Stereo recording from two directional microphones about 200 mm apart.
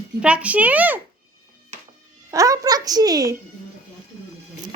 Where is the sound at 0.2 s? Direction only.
5° right (ahead or behind).